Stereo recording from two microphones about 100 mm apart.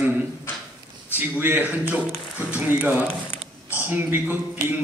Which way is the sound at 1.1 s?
20° right (ahead or behind).